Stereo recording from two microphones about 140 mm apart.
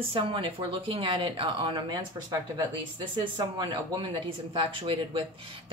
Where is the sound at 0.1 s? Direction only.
40° right (ahead or behind).